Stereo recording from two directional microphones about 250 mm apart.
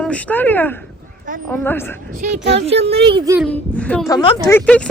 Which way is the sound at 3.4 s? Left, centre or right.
Centre.